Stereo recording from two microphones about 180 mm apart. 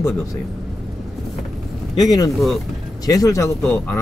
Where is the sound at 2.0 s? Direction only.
20° left (ahead or behind).